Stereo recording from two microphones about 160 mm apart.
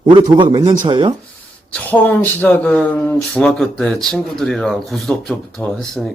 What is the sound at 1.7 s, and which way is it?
Speech, 10° left (ahead or behind).